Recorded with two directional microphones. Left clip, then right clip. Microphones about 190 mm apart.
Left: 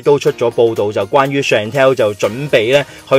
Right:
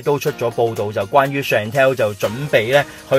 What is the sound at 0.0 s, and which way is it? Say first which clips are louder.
A man's voice: left 7 dB; 35° left (ahead or behind).